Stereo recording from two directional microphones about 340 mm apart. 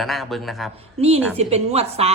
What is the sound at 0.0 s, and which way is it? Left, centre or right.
Speech, centre.